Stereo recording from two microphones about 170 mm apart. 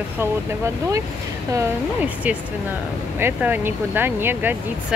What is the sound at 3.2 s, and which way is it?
Speech, 10° right (ahead or behind).